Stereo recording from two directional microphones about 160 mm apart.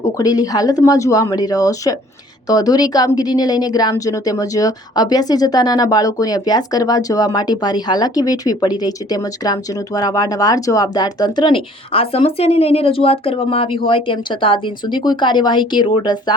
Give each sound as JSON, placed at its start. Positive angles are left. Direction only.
{"t": 0.0, "sound": "speech", "side_deg": 20}